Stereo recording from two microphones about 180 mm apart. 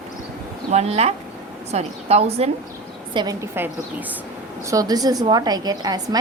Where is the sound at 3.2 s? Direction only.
20° right (ahead or behind).